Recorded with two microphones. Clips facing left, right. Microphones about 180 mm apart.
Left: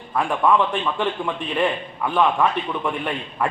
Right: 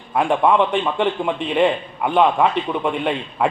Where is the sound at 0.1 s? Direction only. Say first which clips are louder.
Right 3 dB; 20° right (ahead or behind).